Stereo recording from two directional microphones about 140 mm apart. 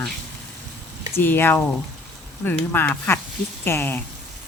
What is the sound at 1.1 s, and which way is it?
Speech, 15° left (ahead or behind).